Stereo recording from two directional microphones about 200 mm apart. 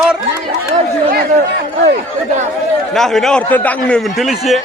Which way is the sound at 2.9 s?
Centre (ahead or behind).